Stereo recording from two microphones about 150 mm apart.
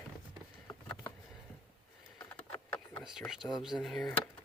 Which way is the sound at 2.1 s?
10° left (ahead or behind).